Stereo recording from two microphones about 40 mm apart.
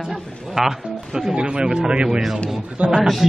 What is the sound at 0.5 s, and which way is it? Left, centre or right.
Speech, centre.